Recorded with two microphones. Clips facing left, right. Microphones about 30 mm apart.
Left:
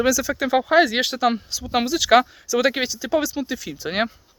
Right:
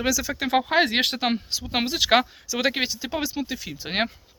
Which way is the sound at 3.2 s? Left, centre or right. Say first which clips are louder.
Left 3 dB; centre.